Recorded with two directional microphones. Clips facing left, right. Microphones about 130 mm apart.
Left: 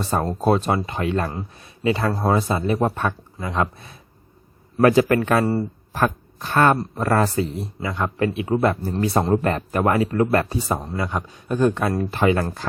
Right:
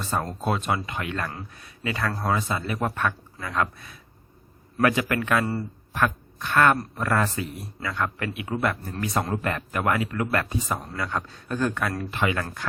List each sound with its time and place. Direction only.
0.0 s speech: 35° left (ahead or behind)
4.8 s speech: 35° left (ahead or behind)
11.2 s speech: 15° left (ahead or behind)
12.1 s speech: 35° left (ahead or behind)